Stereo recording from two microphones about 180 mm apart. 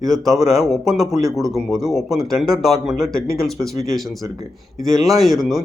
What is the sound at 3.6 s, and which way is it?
Speech, 15° right (ahead or behind).